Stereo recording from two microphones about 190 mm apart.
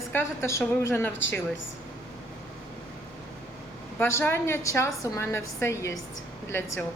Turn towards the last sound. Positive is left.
turn(degrees=15)  # may be behind; listen again after turning